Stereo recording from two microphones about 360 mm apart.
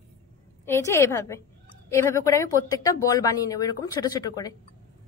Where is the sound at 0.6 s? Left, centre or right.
Centre.